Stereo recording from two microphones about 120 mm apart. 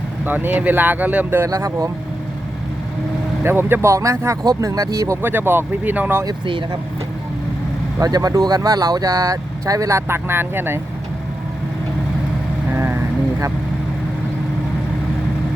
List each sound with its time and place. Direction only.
0.3 s speech: 15° right (ahead or behind)
1.5 s speech: 30° right (ahead or behind)
3.4 s speech: 20° right (ahead or behind)
6.2 s speech: 45° right (ahead or behind)
7.9 s speech: 30° right (ahead or behind)
12.7 s vehicle: 20° right (ahead or behind)